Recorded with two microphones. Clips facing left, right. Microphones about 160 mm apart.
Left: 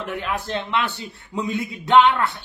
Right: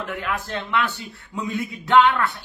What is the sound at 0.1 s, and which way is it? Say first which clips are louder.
A man's voice: left 4 dB; 25° left (ahead or behind).